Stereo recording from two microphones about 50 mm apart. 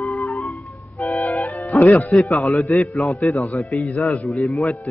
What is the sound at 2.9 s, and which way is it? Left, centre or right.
A man's voice, centre.